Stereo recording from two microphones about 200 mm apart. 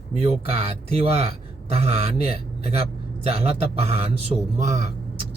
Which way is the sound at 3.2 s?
30° right (ahead or behind).